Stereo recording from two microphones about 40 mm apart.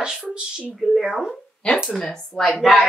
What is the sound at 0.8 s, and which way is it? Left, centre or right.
Speech, centre.